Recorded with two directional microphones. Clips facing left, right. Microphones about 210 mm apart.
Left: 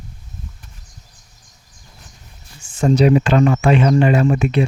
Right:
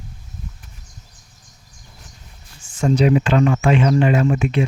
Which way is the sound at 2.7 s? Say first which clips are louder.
Left 3 dB; 40° left (ahead or behind).